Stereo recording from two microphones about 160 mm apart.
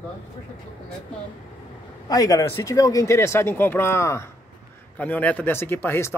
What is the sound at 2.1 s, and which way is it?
Speech, 20° left (ahead or behind).